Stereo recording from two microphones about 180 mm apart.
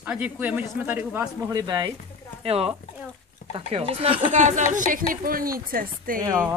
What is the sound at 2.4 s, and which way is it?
Speech, 35° right (ahead or behind).